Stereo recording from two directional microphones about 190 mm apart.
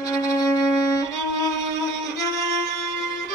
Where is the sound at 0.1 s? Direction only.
15° left (ahead or behind).